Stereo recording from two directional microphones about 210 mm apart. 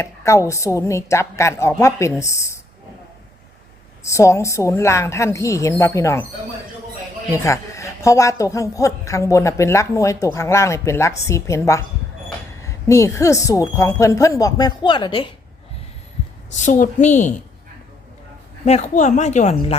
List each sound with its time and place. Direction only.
0.0 s speech: 15° left (ahead or behind)
4.0 s speech: 15° left (ahead or behind)
7.4 s speech: 15° left (ahead or behind)
16.6 s speech: 35° left (ahead or behind)
18.6 s speech: 30° left (ahead or behind)